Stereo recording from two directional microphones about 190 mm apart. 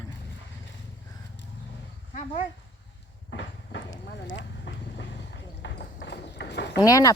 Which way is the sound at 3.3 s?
65° left (ahead or behind).